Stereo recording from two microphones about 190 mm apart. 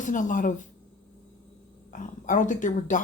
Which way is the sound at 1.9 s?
40° left (ahead or behind).